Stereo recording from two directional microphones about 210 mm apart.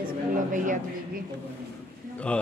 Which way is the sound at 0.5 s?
40° right (ahead or behind).